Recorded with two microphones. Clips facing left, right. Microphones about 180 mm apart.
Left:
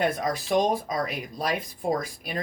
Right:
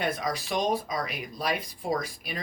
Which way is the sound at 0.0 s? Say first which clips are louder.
Left 4 dB; 50° left (ahead or behind).